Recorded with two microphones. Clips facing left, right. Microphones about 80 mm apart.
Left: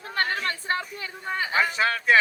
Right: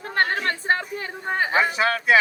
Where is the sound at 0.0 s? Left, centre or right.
Right.